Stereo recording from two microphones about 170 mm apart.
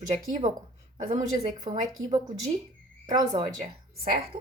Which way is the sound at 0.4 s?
40° right (ahead or behind).